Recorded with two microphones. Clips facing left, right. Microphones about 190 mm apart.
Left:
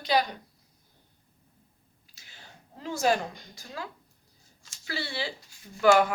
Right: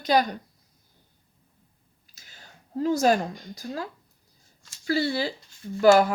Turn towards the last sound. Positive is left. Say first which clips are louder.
# right 4 dB
turn(degrees=-35)  # may be behind; listen again after turning